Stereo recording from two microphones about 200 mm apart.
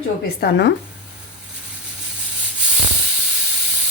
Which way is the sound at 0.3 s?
60° left (ahead or behind).